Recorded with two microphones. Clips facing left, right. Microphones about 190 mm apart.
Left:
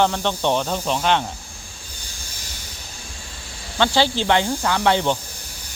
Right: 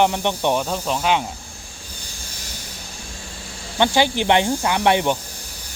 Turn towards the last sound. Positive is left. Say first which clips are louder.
# right 1 dB
turn(degrees=-15)  # may be behind; listen again after turning